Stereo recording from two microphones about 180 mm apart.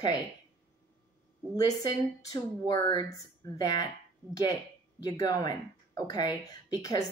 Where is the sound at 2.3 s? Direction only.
20° left (ahead or behind).